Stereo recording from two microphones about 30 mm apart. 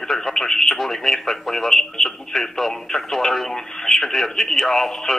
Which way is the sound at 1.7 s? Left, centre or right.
Centre.